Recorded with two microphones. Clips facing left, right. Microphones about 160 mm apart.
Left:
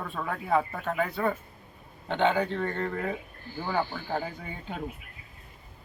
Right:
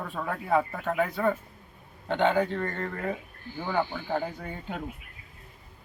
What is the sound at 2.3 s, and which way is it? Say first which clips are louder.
Speech: right 1 dB; 5° right (ahead or behind).